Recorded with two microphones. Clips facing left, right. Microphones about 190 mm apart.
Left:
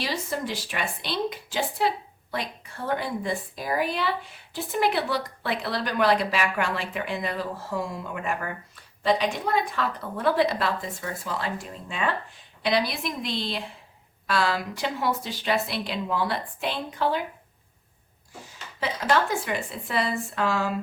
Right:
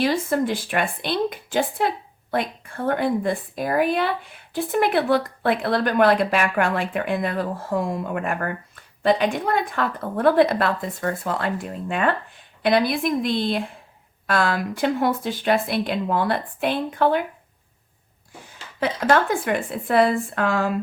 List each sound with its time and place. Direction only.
0.0 s speech: 55° right (ahead or behind)
18.8 s speech: 55° right (ahead or behind)